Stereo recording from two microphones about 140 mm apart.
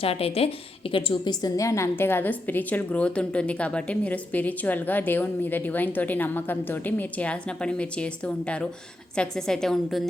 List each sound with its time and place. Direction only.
0.0 s a woman's voice: 45° left (ahead or behind); by 10.0 s 5° left (ahead or behind)